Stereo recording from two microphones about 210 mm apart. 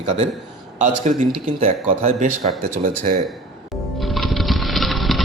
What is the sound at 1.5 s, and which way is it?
Speech, 35° right (ahead or behind).